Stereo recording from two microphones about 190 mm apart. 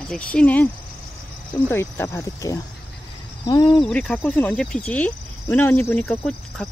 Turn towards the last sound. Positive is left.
turn(degrees=5)  # may be behind; listen again after turning